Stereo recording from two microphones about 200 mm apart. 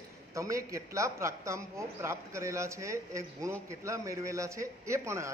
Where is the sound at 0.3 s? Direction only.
15° right (ahead or behind).